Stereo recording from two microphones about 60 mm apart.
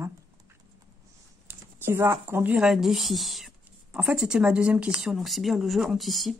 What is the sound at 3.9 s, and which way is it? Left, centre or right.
Speech, centre.